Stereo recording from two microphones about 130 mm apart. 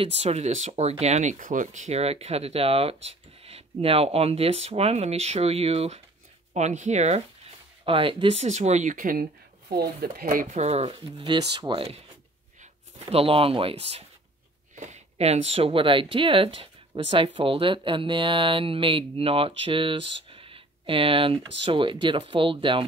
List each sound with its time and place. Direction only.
0.0 s speech: 50° right (ahead or behind)
6.5 s speech: 65° right (ahead or behind)
7.8 s speech: 45° right (ahead or behind)
8.5 s speech: 60° right (ahead or behind); by 9.2 s 90° right
10.3 s speech: 65° right (ahead or behind); by 12.0 s 40° right (ahead or behind)
13.0 s speech: 50° right (ahead or behind)
14.8 s speech: 60° right (ahead or behind); by 22.8 s 40° right (ahead or behind)